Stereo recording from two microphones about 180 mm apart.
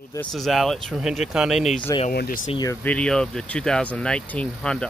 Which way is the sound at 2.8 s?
5° left (ahead or behind).